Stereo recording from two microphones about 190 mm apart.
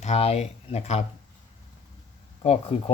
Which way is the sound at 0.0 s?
35° left (ahead or behind).